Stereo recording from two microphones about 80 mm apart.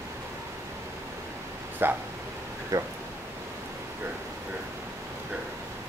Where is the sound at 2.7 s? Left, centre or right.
Right.